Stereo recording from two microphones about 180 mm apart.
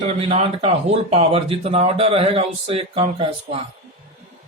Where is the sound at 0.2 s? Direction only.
35° right (ahead or behind).